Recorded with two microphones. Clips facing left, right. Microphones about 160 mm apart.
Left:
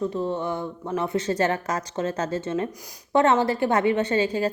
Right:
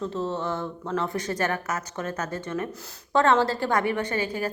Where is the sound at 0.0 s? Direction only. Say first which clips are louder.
Left 3 dB; 15° left (ahead or behind).